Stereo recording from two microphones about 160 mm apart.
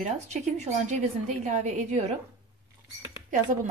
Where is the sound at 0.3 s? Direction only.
45° right (ahead or behind).